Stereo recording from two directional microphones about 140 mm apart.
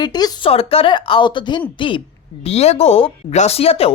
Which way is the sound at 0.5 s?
45° left (ahead or behind).